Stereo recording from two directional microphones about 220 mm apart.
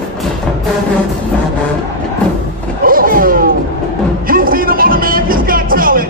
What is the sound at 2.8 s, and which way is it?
Roaring cats, 40° right (ahead or behind).